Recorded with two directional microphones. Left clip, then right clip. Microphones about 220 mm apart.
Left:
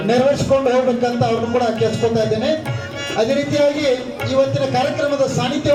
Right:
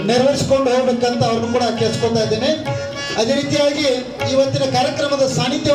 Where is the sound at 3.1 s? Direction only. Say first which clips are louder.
Even; 50° right (ahead or behind).